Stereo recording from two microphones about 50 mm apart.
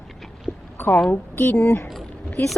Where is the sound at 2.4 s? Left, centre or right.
Left.